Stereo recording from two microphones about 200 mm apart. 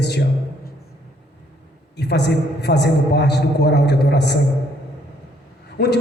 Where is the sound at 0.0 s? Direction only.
55° left (ahead or behind).